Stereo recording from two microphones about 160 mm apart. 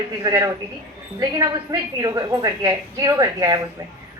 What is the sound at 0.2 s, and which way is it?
A woman's voice, 20° right (ahead or behind).